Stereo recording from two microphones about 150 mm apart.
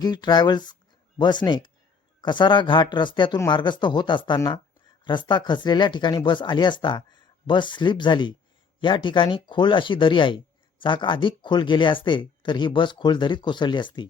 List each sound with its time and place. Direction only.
0.0 s speech: 30° left (ahead or behind)